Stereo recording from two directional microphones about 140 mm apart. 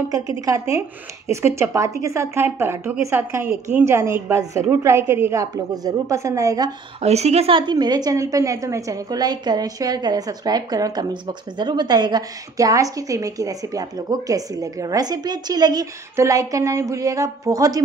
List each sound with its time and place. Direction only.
0.5 s a woman's voice: 25° right (ahead or behind)
7.0 s a woman's voice: 50° right (ahead or behind); by 17.8 s 25° right (ahead or behind)